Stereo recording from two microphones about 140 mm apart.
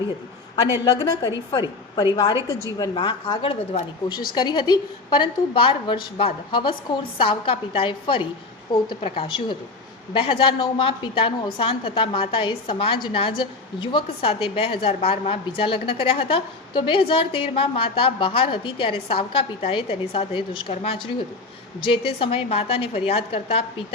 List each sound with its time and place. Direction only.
0.9 s a woman's voice: 30° left (ahead or behind)
4.4 s a woman's voice: 30° left (ahead or behind)